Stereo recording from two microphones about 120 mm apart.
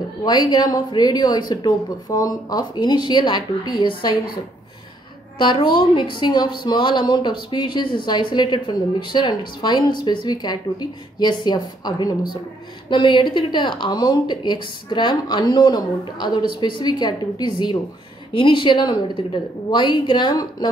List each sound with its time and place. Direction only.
0.2 s a woman's voice: 35° left (ahead or behind)
5.4 s a woman's voice: 40° left (ahead or behind)